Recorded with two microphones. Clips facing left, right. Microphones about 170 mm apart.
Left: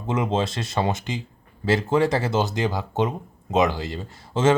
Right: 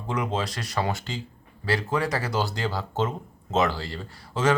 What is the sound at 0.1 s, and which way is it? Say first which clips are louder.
Speech: left 5 dB; 25° left (ahead or behind).